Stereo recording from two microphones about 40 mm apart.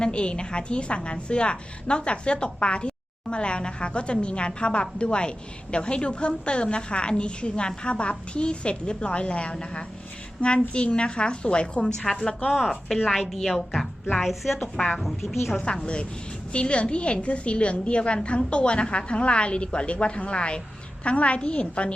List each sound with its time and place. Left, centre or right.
0.0 s a woman's voice: left
12.5 s a woman's voice: centre
14.2 s a woman's voice: centre
15.5 s a woman's voice: left